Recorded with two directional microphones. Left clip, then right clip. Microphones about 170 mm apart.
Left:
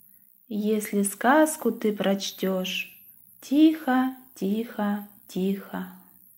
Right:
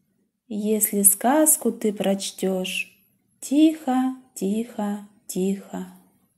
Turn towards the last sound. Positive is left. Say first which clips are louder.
# right 3 dB
turn(degrees=-50)  # may be behind; listen again after turning